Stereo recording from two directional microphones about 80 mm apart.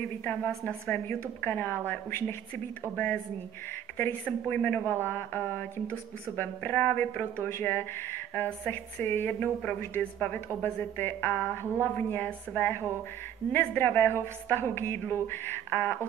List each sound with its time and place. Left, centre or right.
0.8 s a woman's voice: left
3.9 s a woman's voice: left